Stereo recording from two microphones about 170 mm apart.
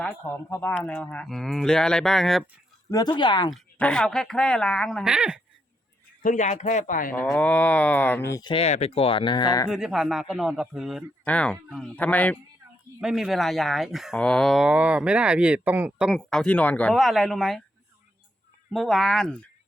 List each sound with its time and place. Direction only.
0.0 s speech: 10° left (ahead or behind)
2.9 s speech: 25° left (ahead or behind)
3.5 s speech: 5° left (ahead or behind)
6.2 s a man's voice: 45° left (ahead or behind)
7.1 s speech: 10° left (ahead or behind)
8.5 s speech: 40° left (ahead or behind)
9.6 s speech: centre (ahead or behind)
13.0 s speech: 5° right (ahead or behind)
18.7 s speech: centre (ahead or behind)